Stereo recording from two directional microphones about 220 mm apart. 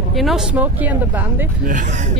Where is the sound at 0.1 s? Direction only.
Centre (ahead or behind).